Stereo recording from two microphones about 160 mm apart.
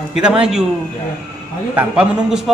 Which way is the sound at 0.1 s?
5° right (ahead or behind).